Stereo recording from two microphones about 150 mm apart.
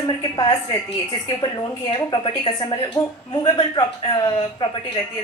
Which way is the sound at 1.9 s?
25° left (ahead or behind).